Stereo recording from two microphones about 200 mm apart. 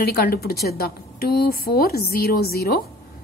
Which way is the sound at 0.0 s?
50° left (ahead or behind).